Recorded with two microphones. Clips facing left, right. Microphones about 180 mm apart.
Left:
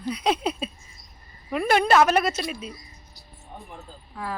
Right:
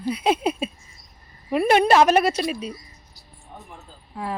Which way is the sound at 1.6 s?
25° right (ahead or behind).